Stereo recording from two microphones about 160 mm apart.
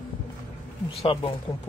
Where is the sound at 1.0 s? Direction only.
35° left (ahead or behind).